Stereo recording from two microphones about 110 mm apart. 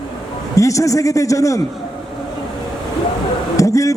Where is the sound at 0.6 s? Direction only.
30° left (ahead or behind).